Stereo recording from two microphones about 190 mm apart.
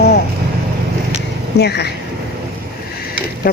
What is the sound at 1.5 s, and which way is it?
Speech, 60° left (ahead or behind).